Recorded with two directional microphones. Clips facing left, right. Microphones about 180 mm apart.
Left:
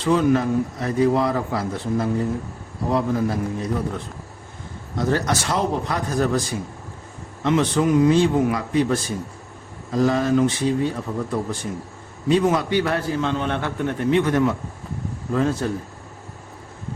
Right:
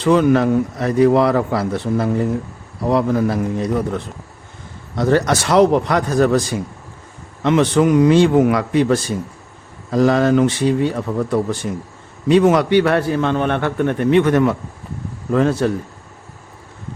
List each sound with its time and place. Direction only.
0.0 s a man's voice: 75° right (ahead or behind)